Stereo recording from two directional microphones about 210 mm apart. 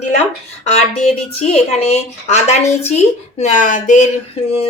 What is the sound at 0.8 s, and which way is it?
A woman's voice, 30° left (ahead or behind).